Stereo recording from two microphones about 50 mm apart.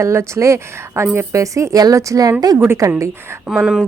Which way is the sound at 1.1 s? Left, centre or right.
Right.